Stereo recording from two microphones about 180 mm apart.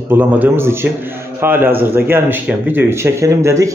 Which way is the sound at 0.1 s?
10° right (ahead or behind).